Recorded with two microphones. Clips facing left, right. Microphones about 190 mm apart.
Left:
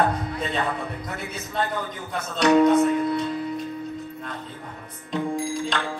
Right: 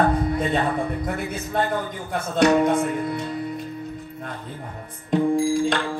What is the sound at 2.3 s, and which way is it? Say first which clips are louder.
Speech: left 1 dB; 50° right (ahead or behind).